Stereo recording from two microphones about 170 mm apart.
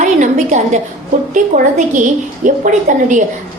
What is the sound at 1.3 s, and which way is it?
Music, 50° right (ahead or behind).